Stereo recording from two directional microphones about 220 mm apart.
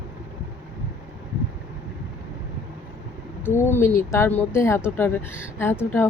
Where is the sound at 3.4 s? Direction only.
10° left (ahead or behind).